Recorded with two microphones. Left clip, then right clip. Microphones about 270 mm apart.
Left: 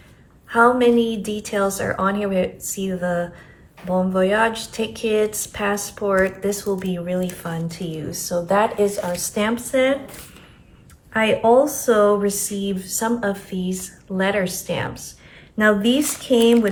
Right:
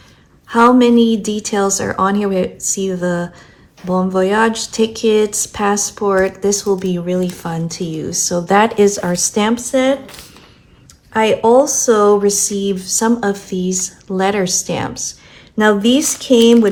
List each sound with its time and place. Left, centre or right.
0.4 s speech: right
11.1 s speech: centre